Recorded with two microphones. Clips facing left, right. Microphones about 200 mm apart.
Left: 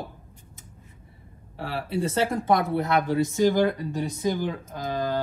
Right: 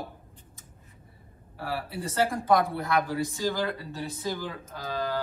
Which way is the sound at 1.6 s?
25° left (ahead or behind).